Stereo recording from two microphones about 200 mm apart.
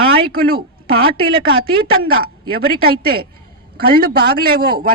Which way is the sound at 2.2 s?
50° right (ahead or behind).